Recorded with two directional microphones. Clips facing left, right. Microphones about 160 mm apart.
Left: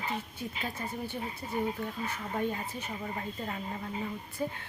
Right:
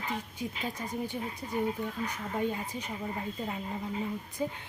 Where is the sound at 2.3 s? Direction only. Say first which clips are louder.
Right 1 dB; 15° right (ahead or behind).